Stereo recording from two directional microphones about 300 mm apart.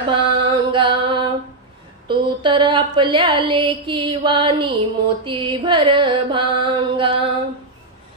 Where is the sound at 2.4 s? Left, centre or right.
Centre.